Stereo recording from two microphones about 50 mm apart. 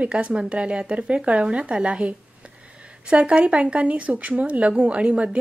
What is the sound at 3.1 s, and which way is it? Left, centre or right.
A woman's voice, centre.